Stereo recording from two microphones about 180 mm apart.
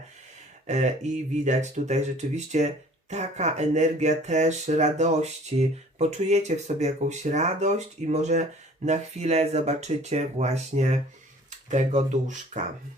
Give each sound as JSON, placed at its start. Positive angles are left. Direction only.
{"t": 0.7, "sound": "speech", "side_deg": -40}